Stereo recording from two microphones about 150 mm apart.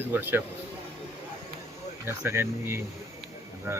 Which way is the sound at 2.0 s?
15° right (ahead or behind).